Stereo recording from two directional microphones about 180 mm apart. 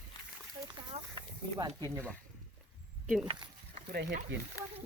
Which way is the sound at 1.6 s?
20° right (ahead or behind).